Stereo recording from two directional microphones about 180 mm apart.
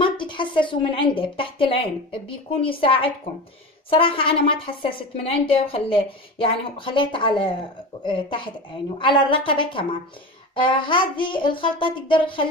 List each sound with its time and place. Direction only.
0.0 s a woman's voice: 25° left (ahead or behind)